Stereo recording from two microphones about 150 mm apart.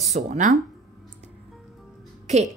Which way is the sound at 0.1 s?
50° right (ahead or behind).